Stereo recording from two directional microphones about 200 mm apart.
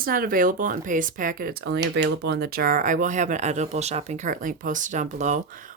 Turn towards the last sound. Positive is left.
turn(degrees=-35)  # may be behind; listen again after turning